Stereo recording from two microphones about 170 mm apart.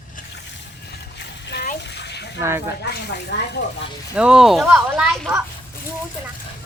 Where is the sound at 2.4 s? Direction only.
15° right (ahead or behind).